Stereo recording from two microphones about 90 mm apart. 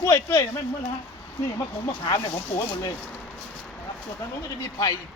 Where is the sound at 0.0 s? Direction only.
30° left (ahead or behind).